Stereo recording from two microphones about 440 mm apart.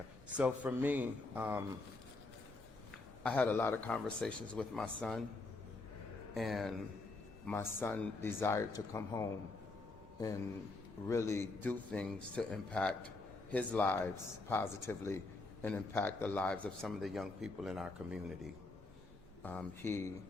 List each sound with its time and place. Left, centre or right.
0.3 s a man's voice: centre
3.2 s a man's voice: centre
6.3 s a man's voice: centre
11.1 s a man's voice: centre
19.4 s a man's voice: centre